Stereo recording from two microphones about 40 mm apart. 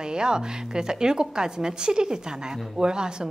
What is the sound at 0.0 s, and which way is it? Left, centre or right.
A woman's voice, centre.